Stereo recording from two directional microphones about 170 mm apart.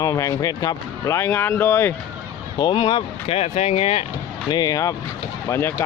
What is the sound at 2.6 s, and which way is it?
Speech, 30° left (ahead or behind).